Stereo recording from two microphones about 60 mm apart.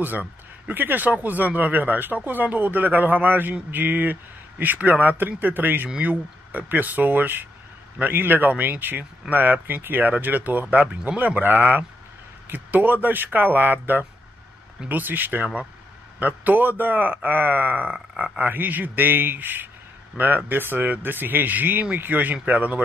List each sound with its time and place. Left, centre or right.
0.0 s speech: right